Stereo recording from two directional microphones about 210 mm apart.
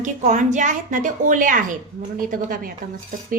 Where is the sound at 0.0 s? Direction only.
35° right (ahead or behind).